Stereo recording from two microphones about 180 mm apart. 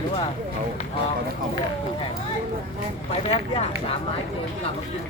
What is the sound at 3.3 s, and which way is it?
Speech, 35° left (ahead or behind).